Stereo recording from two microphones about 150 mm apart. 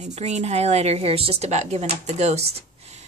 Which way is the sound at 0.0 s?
50° right (ahead or behind).